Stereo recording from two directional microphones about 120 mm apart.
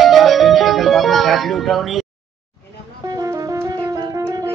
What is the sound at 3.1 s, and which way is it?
Music, 30° right (ahead or behind).